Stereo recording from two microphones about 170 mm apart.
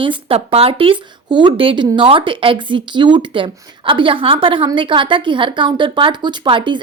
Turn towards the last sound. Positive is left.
turn(degrees=-30)  # may be behind; listen again after turning